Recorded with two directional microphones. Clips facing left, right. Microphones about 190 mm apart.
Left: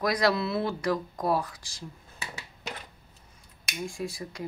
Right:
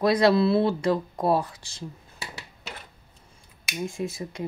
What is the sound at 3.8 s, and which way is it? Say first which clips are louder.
Speech: right 4 dB; 20° right (ahead or behind).